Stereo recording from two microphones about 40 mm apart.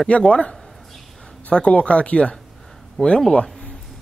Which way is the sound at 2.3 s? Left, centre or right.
Centre.